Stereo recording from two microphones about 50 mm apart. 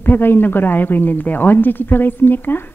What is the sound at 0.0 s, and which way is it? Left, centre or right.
Speech, left.